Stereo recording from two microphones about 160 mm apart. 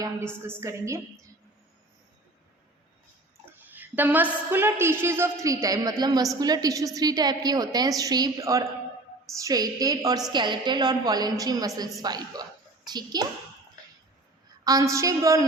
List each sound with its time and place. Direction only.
0.6 s a woman's voice: 15° right (ahead or behind)
3.8 s a woman's voice: 10° right (ahead or behind)
14.6 s a woman's voice: 20° right (ahead or behind)